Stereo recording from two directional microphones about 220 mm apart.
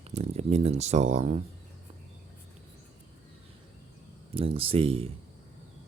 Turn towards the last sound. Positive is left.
turn(degrees=-25)  # may be behind; listen again after turning